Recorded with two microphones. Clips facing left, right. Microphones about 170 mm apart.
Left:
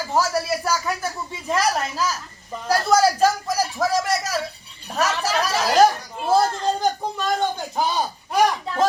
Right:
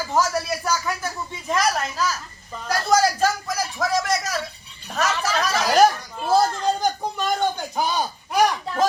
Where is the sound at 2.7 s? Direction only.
35° left (ahead or behind).